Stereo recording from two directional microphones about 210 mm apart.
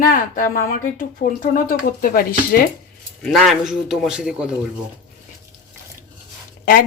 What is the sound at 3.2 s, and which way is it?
Speech, centre (ahead or behind).